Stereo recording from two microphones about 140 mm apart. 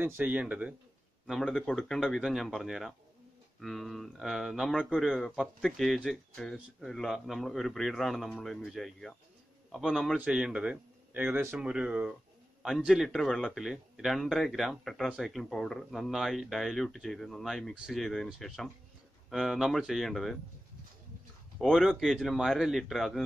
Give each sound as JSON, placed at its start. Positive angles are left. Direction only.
{"t": 0.0, "sound": "a man's voice", "side_deg": -10}
{"t": 21.5, "sound": "speech", "side_deg": 0}